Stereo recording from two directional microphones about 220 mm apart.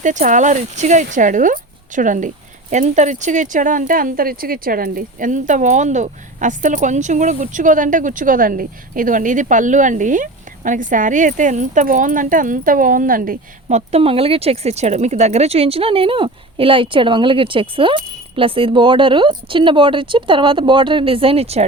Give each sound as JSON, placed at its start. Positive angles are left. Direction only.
{"t": 0.0, "sound": "speech", "side_deg": -35}